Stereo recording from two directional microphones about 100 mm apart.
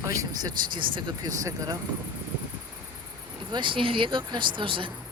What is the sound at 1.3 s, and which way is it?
Speech, 35° right (ahead or behind).